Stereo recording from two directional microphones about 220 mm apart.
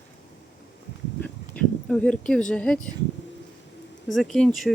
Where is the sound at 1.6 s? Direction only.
5° left (ahead or behind).